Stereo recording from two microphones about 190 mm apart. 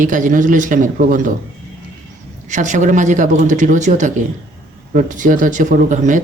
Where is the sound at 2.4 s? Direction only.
40° right (ahead or behind).